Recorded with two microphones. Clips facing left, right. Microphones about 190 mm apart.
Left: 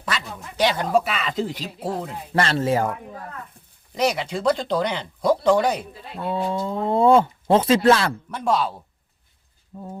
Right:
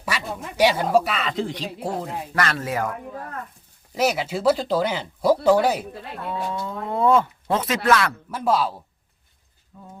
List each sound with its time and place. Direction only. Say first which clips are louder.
0.0 s speech: right 1 dB; 10° right (ahead or behind)
2.3 s speech: left 5 dB; 30° left (ahead or behind)
3.9 s speech: even; 5° right (ahead or behind)
6.2 s speech: left 5 dB; 30° left (ahead or behind)
8.3 s speech: right 1 dB; centre (ahead or behind)
9.7 s speech: left 8 dB; 35° left (ahead or behind)